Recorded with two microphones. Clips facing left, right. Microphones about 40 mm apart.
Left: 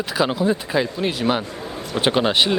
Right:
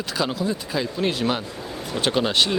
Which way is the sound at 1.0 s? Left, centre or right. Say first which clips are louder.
Left 1 dB; centre.